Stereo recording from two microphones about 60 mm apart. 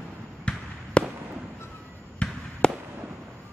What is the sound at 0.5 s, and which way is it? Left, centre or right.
Basketball bounce, centre.